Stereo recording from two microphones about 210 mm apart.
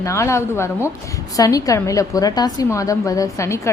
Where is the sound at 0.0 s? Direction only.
15° left (ahead or behind).